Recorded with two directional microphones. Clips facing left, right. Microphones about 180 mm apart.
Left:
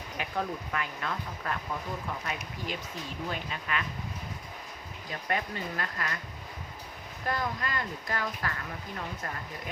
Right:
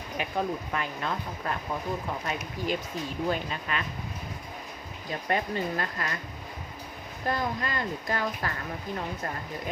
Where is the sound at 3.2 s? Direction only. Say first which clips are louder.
Right 5 dB; 30° right (ahead or behind).